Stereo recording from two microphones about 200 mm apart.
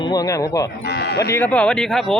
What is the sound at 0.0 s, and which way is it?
Speech, 20° left (ahead or behind).